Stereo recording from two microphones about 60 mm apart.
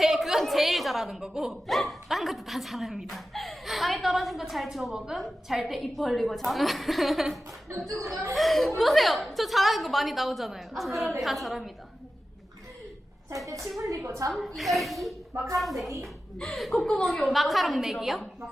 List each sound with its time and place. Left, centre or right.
0.0 s a woman's voice: centre
4.9 s a woman's voice: centre
7.9 s speech: right
8.4 s a woman's voice: centre
13.3 s a woman's voice: right
14.3 s a woman's voice: centre